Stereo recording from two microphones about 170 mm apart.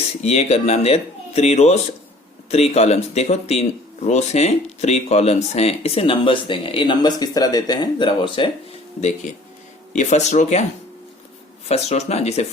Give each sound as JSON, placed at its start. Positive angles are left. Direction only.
{"t": 0.2, "sound": "speech", "side_deg": 40}
{"t": 9.9, "sound": "speech", "side_deg": 45}
{"t": 11.7, "sound": "speech", "side_deg": 40}